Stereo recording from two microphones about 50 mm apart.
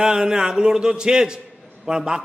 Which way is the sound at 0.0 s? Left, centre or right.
Centre.